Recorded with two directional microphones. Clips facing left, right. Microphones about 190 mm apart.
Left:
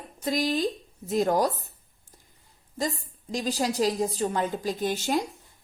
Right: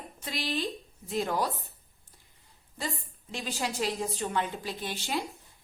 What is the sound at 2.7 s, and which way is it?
A woman's voice, 40° left (ahead or behind).